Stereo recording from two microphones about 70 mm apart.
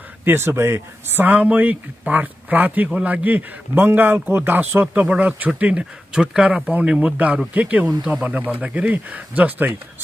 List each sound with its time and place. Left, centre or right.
0.2 s a man's voice: right